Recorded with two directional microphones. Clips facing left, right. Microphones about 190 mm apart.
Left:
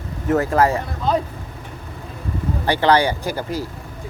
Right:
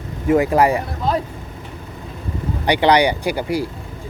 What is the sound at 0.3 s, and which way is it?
Speech, 15° right (ahead or behind).